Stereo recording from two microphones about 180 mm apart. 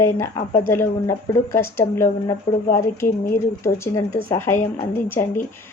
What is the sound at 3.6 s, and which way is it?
Speech, 15° left (ahead or behind).